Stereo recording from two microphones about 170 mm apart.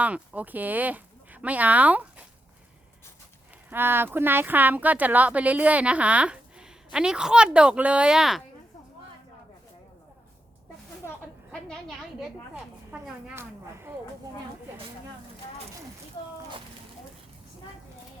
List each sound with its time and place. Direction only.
0.0 s speech: 10° right (ahead or behind)
3.7 s speech: 10° right (ahead or behind)
11.5 s speech: centre (ahead or behind); by 14.0 s 15° right (ahead or behind)